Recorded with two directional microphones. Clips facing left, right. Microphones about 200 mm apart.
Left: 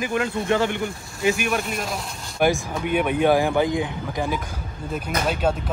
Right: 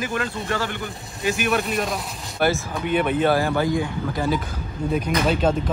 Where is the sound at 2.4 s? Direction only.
10° left (ahead or behind).